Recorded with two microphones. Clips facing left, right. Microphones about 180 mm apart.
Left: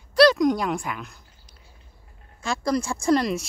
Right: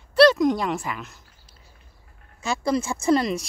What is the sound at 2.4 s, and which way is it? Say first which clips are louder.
Speech: right 1 dB; 5° right (ahead or behind).